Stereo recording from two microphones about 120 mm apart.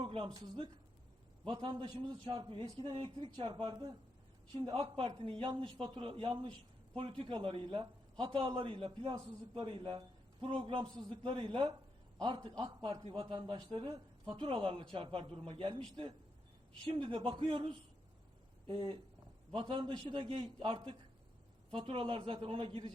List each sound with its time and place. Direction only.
0.0 s a man's voice: 45° right (ahead or behind)
2.3 s a man's voice: 45° right (ahead or behind)
16.9 s a man's voice: 45° right (ahead or behind)